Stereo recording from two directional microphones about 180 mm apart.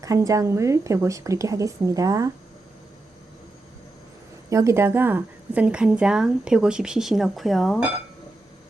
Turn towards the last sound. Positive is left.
turn(degrees=0)  # may be behind; listen again after turning